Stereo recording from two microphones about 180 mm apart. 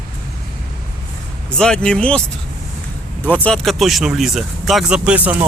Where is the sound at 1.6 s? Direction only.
5° left (ahead or behind).